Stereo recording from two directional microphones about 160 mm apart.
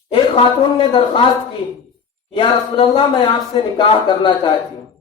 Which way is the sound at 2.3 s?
30° left (ahead or behind).